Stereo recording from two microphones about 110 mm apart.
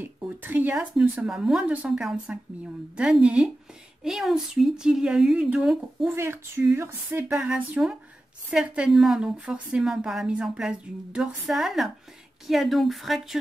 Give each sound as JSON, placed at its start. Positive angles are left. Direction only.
{"t": 0.0, "sound": "a sound", "side_deg": -20}
{"t": 0.7, "sound": "a woman's voice", "side_deg": -5}
{"t": 6.0, "sound": "a woman's voice", "side_deg": -20}
{"t": 7.3, "sound": "a woman's voice", "side_deg": -10}